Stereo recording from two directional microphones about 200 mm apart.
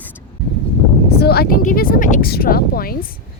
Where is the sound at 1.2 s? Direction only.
50° left (ahead or behind).